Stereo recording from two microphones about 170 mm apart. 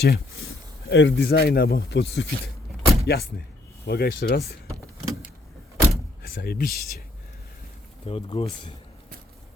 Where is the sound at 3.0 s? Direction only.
70° left (ahead or behind).